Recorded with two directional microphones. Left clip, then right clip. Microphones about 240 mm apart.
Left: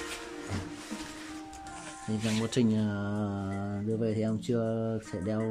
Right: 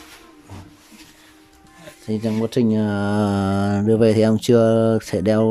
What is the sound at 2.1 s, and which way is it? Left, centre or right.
Speech, right.